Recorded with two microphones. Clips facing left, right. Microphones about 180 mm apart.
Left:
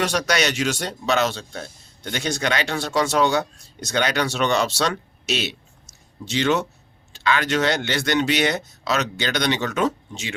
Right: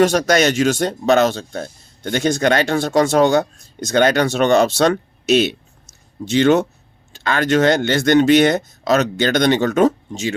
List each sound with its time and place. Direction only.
0.0 s speech: 45° right (ahead or behind)